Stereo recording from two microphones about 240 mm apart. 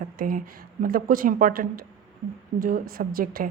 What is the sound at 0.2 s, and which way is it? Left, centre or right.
A woman's voice, right.